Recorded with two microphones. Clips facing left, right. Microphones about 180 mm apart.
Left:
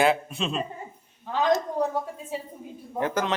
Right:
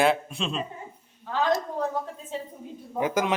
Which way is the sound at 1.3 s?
15° left (ahead or behind).